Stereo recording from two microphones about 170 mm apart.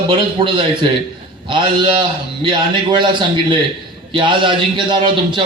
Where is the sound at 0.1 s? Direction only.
30° right (ahead or behind).